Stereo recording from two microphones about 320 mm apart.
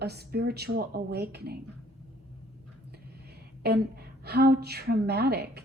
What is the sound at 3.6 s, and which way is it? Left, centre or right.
A woman's voice, right.